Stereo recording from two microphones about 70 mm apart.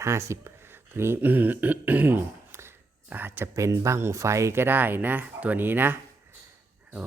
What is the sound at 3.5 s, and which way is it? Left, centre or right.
Speech, right.